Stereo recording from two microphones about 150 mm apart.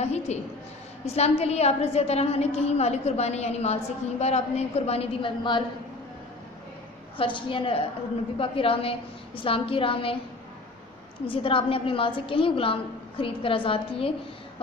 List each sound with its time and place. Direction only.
0.0 s a sound: 45° left (ahead or behind)
1.0 s a woman's voice: 45° left (ahead or behind)
7.2 s a woman's voice: 35° left (ahead or behind)
11.2 s a woman's voice: 35° left (ahead or behind)